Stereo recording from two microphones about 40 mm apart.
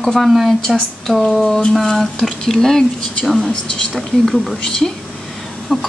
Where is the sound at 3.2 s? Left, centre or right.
Centre.